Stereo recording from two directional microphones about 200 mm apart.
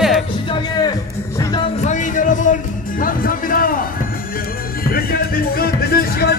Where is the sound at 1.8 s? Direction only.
40° left (ahead or behind).